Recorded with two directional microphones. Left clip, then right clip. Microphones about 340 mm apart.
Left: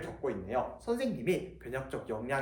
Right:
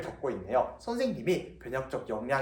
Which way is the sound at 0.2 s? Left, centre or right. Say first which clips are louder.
Right 5 dB; centre.